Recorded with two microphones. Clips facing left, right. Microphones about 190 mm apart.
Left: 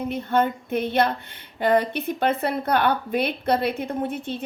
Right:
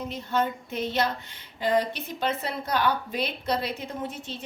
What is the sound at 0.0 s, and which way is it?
Speech, 55° left (ahead or behind).